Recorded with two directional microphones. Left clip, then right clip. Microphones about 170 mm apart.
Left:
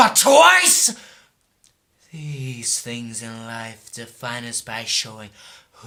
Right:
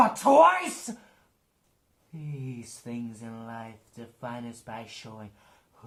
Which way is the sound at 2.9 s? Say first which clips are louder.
Left 8 dB; 20° left (ahead or behind).